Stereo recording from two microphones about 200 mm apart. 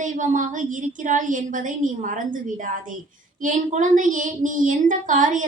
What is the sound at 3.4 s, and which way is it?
Speech, 40° right (ahead or behind).